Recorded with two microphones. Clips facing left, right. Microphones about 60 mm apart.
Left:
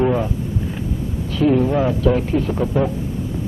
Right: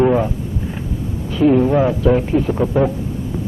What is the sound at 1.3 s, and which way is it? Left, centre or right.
Speech, centre.